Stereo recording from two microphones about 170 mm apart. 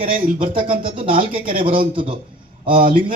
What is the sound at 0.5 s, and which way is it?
Speech, 30° right (ahead or behind).